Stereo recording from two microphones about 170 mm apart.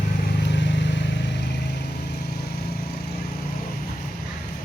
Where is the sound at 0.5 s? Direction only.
90° left.